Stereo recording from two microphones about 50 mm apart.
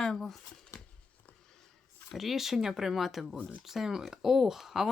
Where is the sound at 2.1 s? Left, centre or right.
Centre.